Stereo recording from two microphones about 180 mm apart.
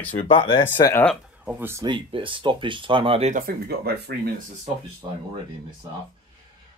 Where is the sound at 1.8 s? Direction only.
25° right (ahead or behind).